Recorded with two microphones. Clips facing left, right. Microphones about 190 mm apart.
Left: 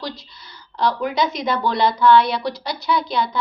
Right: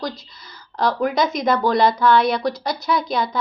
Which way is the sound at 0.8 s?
45° right (ahead or behind).